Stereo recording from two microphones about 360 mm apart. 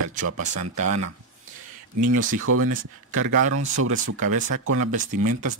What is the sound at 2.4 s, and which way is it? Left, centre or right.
Speech, right.